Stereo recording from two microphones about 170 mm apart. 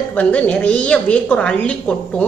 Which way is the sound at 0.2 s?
10° left (ahead or behind).